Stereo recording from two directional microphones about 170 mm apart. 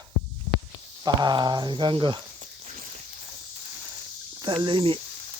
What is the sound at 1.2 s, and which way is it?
Speech, 25° right (ahead or behind).